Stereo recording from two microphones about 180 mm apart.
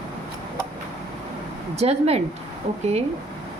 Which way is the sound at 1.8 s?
35° right (ahead or behind).